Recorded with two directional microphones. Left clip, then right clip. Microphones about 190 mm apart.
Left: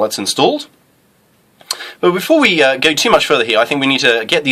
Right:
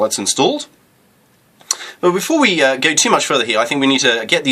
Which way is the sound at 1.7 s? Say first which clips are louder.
Left 1 dB; 35° left (ahead or behind).